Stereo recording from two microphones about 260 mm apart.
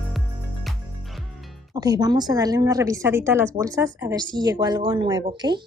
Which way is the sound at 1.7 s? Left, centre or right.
Centre.